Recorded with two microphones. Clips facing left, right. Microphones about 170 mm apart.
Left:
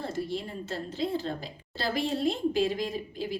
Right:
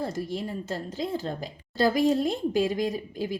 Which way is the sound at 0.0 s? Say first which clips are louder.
Right 2 dB; 40° right (ahead or behind).